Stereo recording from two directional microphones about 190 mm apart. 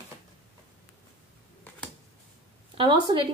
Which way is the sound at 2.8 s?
25° right (ahead or behind).